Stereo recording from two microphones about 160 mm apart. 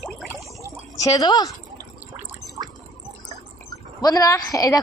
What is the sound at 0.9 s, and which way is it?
Speech, 20° left (ahead or behind).